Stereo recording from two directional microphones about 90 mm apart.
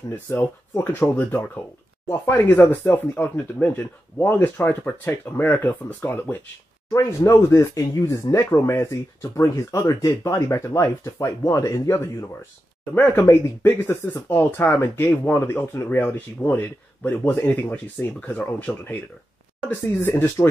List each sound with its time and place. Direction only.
0.1 s speech: 25° left (ahead or behind)
12.9 s speech: 25° left (ahead or behind)